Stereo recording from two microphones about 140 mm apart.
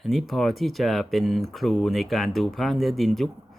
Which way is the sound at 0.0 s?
Centre (ahead or behind).